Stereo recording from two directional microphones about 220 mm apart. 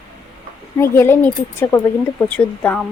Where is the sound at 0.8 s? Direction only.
10° left (ahead or behind).